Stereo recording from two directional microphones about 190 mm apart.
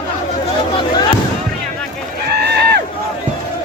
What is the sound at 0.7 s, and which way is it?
Fireworks, 20° left (ahead or behind).